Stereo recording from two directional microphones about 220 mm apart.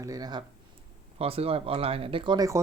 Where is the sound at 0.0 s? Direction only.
15° right (ahead or behind).